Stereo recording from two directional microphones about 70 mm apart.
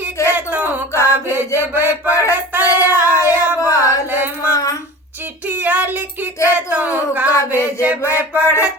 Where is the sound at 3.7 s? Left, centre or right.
Left.